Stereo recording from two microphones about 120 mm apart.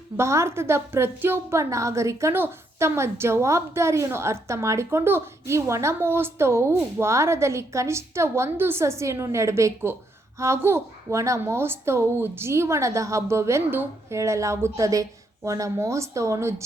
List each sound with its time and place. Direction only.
0.2 s a woman's voice: 25° right (ahead or behind)